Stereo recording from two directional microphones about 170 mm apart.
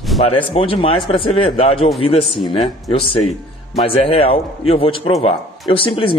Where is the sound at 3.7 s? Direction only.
35° left (ahead or behind).